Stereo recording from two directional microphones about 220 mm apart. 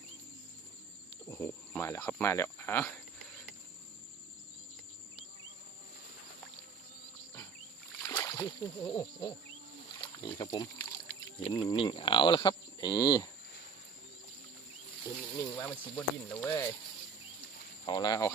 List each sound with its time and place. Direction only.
1.3 s speech: 10° left (ahead or behind)
8.0 s speech: 15° left (ahead or behind)
15.4 s speech: 10° left (ahead or behind)
17.8 s speech: 20° left (ahead or behind)